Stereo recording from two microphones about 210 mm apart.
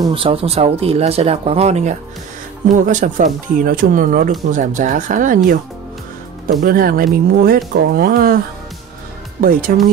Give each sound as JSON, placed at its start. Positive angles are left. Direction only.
{"t": 0.0, "sound": "speech", "side_deg": -25}
{"t": 6.6, "sound": "speech", "side_deg": -45}
{"t": 9.4, "sound": "speech", "side_deg": -40}